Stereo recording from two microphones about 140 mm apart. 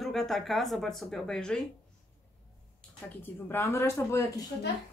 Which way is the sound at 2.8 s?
5° left (ahead or behind).